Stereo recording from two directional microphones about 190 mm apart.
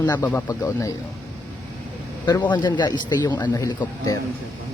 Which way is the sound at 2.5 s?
25° left (ahead or behind).